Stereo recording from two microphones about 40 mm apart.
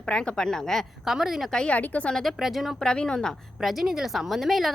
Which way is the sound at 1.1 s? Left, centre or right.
Centre.